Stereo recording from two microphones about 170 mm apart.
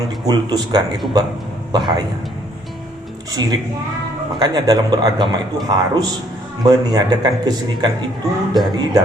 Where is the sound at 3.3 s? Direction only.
25° right (ahead or behind).